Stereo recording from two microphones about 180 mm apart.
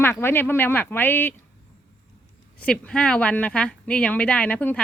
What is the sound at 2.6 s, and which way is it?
Speech, 5° left (ahead or behind).